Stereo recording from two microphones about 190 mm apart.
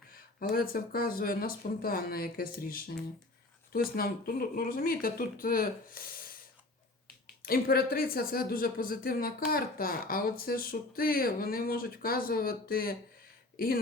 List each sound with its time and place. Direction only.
0.1 s speech: 50° left (ahead or behind)
7.4 s speech: 50° left (ahead or behind)